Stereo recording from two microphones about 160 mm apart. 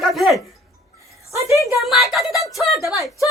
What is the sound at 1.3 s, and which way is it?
Speech, 20° right (ahead or behind).